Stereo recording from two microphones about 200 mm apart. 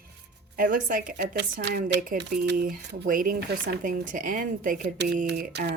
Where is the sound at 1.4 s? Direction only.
55° right (ahead or behind).